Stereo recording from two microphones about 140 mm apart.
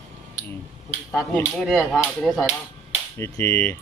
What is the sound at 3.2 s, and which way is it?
Speech, 15° left (ahead or behind).